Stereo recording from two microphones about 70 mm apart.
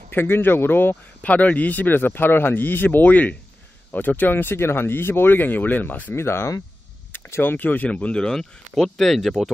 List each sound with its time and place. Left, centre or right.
0.1 s speech: left
6.1 s speech: left
7.1 s a sound: left
7.5 s speech: left; by 9.5 s centre